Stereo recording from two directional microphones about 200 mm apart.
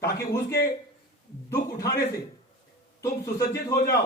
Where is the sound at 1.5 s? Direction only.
15° left (ahead or behind).